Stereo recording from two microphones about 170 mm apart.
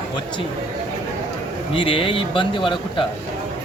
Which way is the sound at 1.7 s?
30° left (ahead or behind).